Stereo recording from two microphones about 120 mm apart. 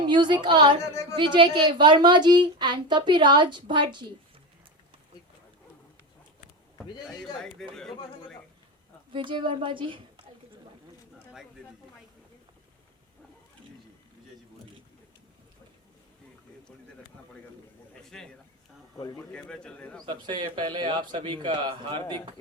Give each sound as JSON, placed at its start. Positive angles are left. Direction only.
{"t": 0.0, "sound": "a woman's voice", "side_deg": -40}
{"t": 7.3, "sound": "speech", "side_deg": 5}
{"t": 9.1, "sound": "a woman's voice", "side_deg": -45}
{"t": 18.1, "sound": "a man's voice", "side_deg": 5}
{"t": 20.1, "sound": "a woman's voice", "side_deg": -40}